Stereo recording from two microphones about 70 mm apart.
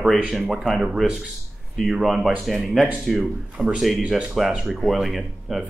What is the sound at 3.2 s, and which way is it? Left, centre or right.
Speech, centre.